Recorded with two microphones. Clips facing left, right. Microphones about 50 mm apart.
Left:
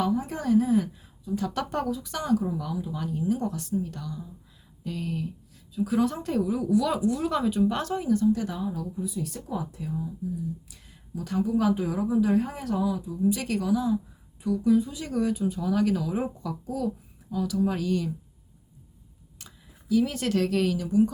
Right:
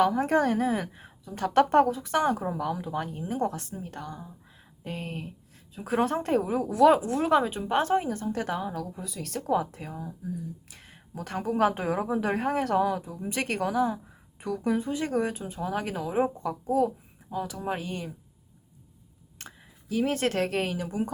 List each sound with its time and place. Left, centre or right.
0.0 s speech: right
2.5 s speech: right
10.7 s speech: right
19.4 s speech: right